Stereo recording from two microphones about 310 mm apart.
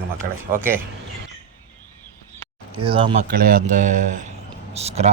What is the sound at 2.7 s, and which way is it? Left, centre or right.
Speech, centre.